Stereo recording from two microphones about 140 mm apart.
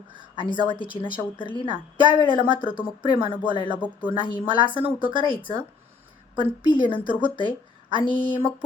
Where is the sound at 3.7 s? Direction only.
10° right (ahead or behind).